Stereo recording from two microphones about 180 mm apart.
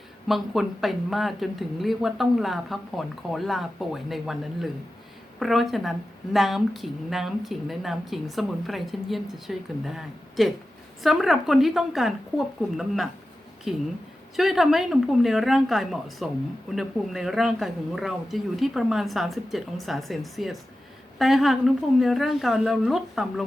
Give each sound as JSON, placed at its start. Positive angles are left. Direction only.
{"t": 0.3, "sound": "a woman's voice", "side_deg": 0}